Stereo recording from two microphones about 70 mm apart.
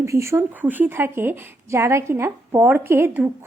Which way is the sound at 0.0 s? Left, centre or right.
Right.